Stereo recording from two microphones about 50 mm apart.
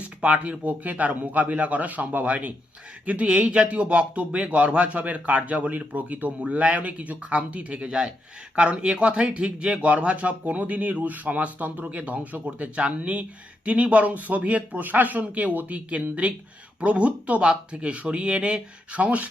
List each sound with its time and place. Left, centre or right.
0.2 s speech: right